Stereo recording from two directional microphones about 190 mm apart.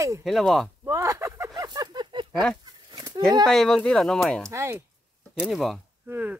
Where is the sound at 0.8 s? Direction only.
15° right (ahead or behind).